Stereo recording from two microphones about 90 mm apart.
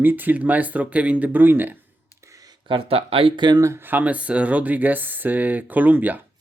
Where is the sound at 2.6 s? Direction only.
85° right.